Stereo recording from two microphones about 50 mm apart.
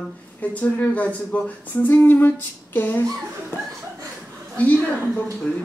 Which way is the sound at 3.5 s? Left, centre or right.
Left.